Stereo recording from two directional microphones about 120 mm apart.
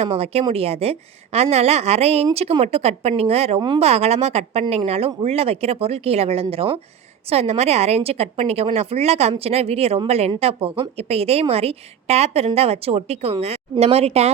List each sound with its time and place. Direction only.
0.0 s a woman's voice: 60° right (ahead or behind)